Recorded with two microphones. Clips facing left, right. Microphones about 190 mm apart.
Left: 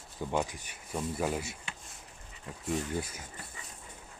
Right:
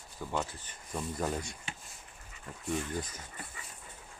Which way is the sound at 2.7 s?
10° left (ahead or behind).